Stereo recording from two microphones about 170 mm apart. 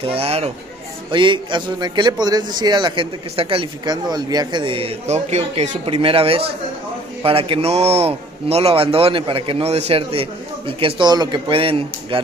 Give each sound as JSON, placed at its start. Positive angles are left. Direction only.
{"t": 0.0, "sound": "a man's voice", "side_deg": -35}